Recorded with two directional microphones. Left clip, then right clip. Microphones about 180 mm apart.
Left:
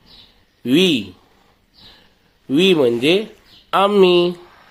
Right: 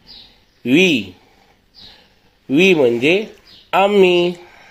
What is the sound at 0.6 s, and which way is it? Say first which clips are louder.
Speech: right 2 dB; 10° left (ahead or behind).